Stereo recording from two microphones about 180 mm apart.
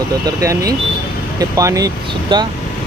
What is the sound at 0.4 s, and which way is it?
Speech, 20° right (ahead or behind).